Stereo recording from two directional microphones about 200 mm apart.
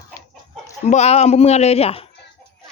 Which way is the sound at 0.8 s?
35° left (ahead or behind).